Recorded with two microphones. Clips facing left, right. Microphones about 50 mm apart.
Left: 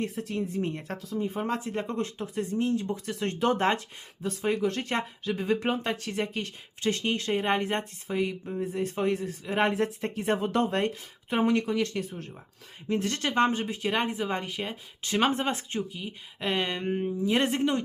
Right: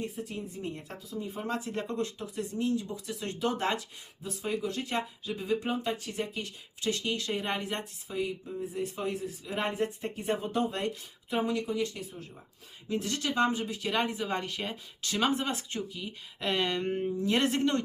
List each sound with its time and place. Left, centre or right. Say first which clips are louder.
0.0 s speech: left 6 dB; left
6.8 s speech: left 4 dB; left
8.0 s speech: left 4 dB; left
9.6 s speech: left 4 dB; left
10.7 s speech: left 5 dB; left
11.4 s speech: left 5 dB; left
12.9 s speech: left 4 dB; left; by 14.8 s centre
15.2 s speech: left 3 dB; left
16.0 s speech: left 2 dB; centre